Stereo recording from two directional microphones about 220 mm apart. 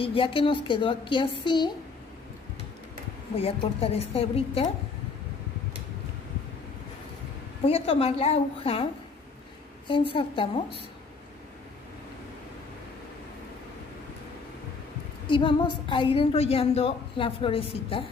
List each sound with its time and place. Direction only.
0.0 s a woman's voice: 25° left (ahead or behind)
3.3 s a woman's voice: 25° left (ahead or behind)
7.6 s a woman's voice: 25° left (ahead or behind)
9.8 s a woman's voice: 25° left (ahead or behind)
15.2 s a woman's voice: 20° left (ahead or behind)